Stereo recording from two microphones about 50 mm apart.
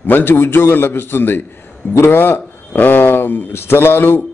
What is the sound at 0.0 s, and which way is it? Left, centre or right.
A man's voice, left.